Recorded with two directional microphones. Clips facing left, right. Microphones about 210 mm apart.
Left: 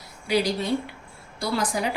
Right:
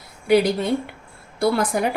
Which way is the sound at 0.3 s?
55° right (ahead or behind).